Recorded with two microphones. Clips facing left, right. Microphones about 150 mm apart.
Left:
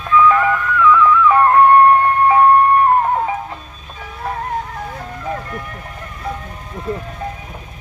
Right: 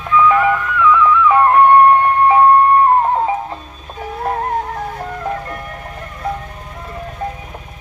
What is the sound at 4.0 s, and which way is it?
Music, 40° right (ahead or behind).